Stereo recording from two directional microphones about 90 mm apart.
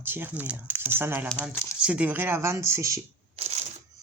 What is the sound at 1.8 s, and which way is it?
Speech, 15° right (ahead or behind).